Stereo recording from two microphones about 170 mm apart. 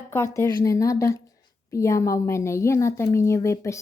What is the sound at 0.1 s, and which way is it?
A woman's voice, 15° left (ahead or behind).